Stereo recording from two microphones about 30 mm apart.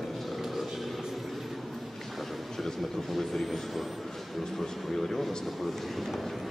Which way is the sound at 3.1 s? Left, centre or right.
Centre.